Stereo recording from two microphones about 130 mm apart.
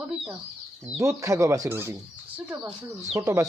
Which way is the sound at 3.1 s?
20° right (ahead or behind).